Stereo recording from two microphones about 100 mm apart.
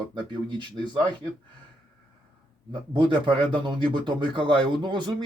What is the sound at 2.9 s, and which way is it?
Speech, 50° right (ahead or behind).